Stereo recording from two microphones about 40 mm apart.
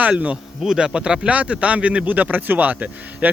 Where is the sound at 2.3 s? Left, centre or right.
Right.